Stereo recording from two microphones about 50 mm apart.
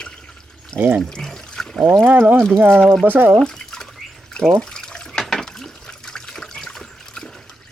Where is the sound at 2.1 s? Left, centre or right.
Right.